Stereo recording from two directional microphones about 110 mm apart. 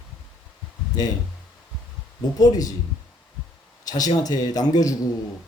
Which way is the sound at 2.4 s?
35° left (ahead or behind).